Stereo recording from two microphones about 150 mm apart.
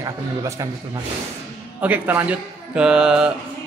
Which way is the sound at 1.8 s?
10° right (ahead or behind).